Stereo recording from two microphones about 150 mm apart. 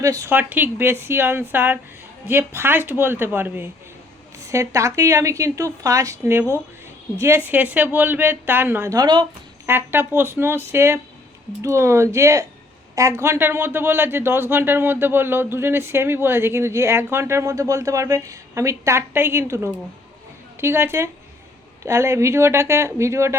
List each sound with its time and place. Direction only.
0.0 s a woman's voice: 20° right (ahead or behind)
9.6 s a woman's voice: 15° right (ahead or behind)